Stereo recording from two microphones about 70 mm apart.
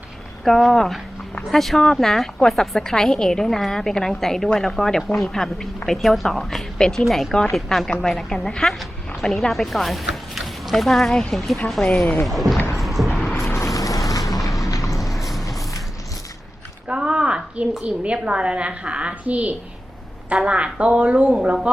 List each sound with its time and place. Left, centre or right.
0.4 s a woman's voice: centre
7.9 s a woman's voice: centre
12.7 s a sound: centre
13.5 s a sound: left
14.9 s music: centre
16.9 s a woman's voice: centre